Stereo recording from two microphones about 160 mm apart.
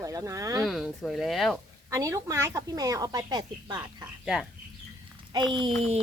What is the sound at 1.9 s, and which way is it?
Speech, 20° right (ahead or behind).